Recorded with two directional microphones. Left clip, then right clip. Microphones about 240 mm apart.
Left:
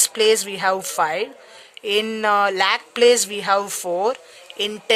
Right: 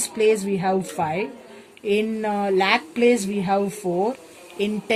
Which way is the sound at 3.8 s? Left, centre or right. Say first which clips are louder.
Left 2 dB; left.